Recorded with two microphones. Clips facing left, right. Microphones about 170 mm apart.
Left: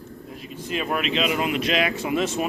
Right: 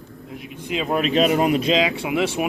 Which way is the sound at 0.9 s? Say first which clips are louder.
Right 7 dB; 40° right (ahead or behind).